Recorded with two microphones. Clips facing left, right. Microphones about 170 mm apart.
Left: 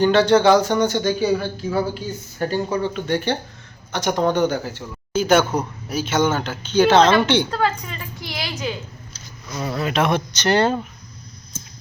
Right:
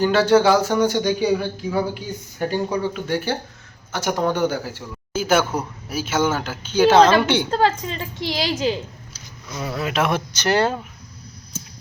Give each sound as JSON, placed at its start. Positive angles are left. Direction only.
{"t": 0.0, "sound": "speech", "side_deg": -5}
{"t": 7.5, "sound": "a woman's voice", "side_deg": -30}
{"t": 9.1, "sound": "speech", "side_deg": -5}